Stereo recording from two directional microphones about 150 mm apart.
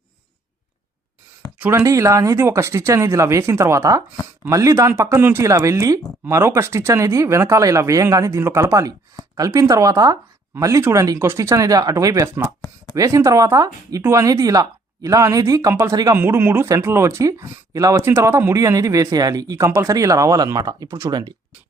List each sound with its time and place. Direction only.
1.5 s speech: 10° right (ahead or behind)
12.6 s a sound: 25° left (ahead or behind)
13.0 s speech: 20° right (ahead or behind)